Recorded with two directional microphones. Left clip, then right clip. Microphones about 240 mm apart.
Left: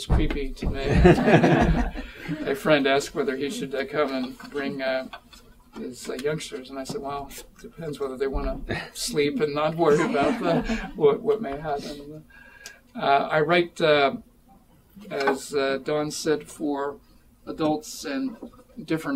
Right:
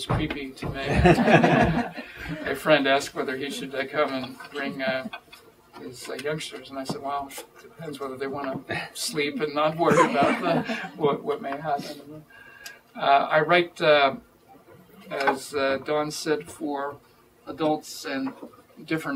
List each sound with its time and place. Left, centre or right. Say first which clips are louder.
0.2 s speech: left 1 dB; centre
8.2 s speech: left 2 dB; centre
12.9 s speech: right 1 dB; centre
17.5 s speech: even; centre
19.1 s speech: left 3 dB; left